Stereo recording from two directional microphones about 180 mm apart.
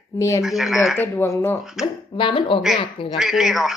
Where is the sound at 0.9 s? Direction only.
10° left (ahead or behind).